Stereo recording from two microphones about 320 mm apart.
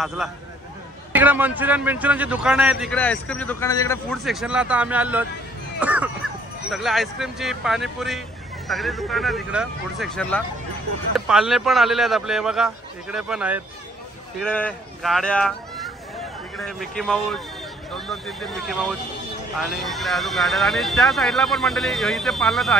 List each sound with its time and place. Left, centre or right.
0.0 s a man's voice: centre